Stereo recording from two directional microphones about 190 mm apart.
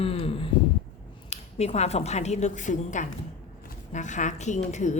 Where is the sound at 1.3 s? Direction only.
35° left (ahead or behind).